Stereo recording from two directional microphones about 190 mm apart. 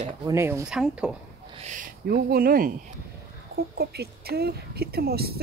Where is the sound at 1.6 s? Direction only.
45° right (ahead or behind).